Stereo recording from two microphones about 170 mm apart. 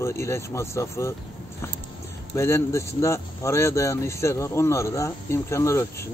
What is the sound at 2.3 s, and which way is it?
Speech, 15° left (ahead or behind).